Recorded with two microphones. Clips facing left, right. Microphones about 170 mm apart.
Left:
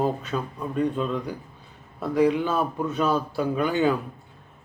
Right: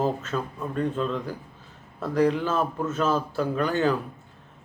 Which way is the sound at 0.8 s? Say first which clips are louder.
Left 2 dB; 15° left (ahead or behind).